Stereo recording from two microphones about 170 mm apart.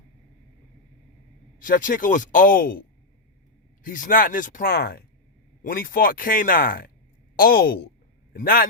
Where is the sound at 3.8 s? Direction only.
50° left (ahead or behind).